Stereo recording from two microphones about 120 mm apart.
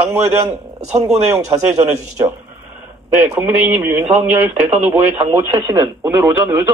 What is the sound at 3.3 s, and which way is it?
Speech, 20° right (ahead or behind).